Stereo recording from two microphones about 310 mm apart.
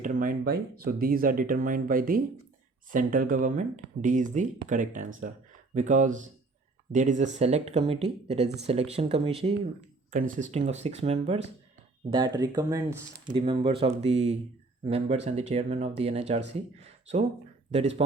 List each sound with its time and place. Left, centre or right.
0.0 s speech: right